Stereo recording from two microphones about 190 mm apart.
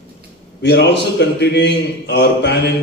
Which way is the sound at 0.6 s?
65° left (ahead or behind).